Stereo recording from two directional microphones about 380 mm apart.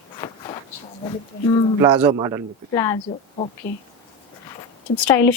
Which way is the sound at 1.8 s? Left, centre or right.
Centre.